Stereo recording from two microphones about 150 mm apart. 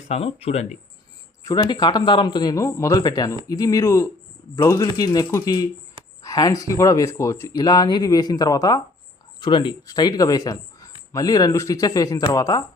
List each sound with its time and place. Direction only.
0.1 s speech: 40° left (ahead or behind)
1.5 s speech: 25° left (ahead or behind)